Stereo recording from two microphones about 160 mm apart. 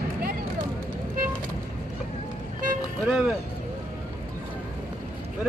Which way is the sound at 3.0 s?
5° right (ahead or behind).